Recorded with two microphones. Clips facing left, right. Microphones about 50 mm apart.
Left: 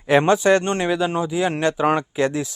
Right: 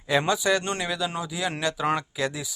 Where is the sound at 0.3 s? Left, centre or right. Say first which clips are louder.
Left 8 dB; left.